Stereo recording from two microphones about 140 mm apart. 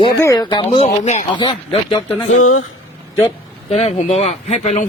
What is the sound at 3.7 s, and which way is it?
Speech, 50° left (ahead or behind).